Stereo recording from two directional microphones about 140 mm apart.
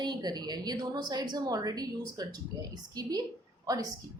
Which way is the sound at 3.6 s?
25° right (ahead or behind).